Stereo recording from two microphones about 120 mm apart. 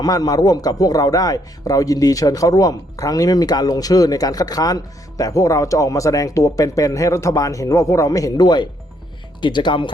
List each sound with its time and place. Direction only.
0.0 s a man's voice: 35° left (ahead or behind)